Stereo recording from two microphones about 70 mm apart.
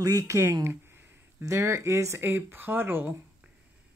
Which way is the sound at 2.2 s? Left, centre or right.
Right.